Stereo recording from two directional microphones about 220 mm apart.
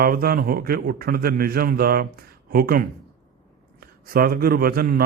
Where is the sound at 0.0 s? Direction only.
40° right (ahead or behind).